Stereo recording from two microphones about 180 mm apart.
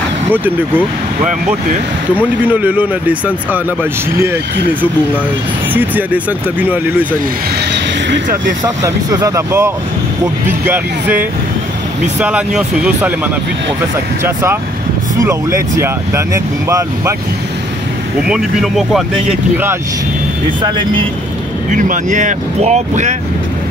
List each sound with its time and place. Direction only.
2.4 s speech: 10° right (ahead or behind)
5.7 s speech: 10° right (ahead or behind)
8.8 s speech: 15° right (ahead or behind)
10.7 s speech: 10° right (ahead or behind)
14.2 s speech: 15° right (ahead or behind)
18.2 s speech: centre (ahead or behind)
19.5 s speech: 10° right (ahead or behind)
20.6 s speech: 25° right (ahead or behind)
21.6 s speech: 45° right (ahead or behind)